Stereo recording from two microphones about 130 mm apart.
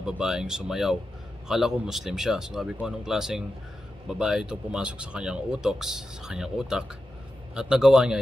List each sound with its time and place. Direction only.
0.0 s speech: 5° right (ahead or behind)